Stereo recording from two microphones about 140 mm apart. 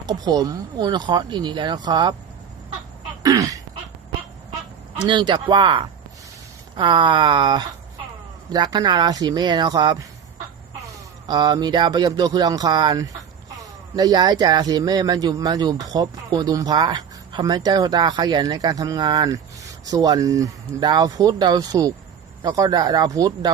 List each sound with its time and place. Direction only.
0.0 s speech: 30° right (ahead or behind)
3.2 s a sound: 25° right (ahead or behind)
5.0 s speech: 35° right (ahead or behind)
11.3 s speech: 30° right (ahead or behind)